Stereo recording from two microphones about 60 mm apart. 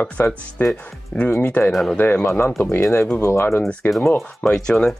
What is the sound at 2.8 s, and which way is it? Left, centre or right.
Speech, left.